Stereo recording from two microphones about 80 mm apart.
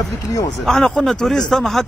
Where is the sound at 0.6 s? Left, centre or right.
Centre.